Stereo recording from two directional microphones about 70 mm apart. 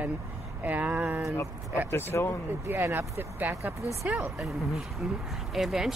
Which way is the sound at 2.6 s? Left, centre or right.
Right.